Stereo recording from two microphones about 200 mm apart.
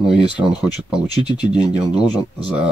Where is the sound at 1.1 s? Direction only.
20° left (ahead or behind).